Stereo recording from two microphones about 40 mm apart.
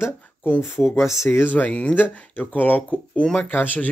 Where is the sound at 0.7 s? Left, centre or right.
Left.